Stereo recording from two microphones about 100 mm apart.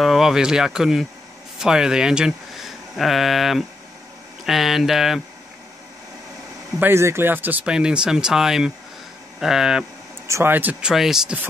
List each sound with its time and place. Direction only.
0.0 s speech: 5° right (ahead or behind)
6.8 s speech: 25° right (ahead or behind); by 9.8 s 5° right (ahead or behind)
10.2 s speech: 30° right (ahead or behind)
10.5 s speech: 15° right (ahead or behind)